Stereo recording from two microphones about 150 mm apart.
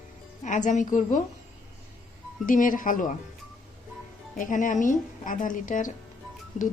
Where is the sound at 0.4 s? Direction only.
55° left (ahead or behind).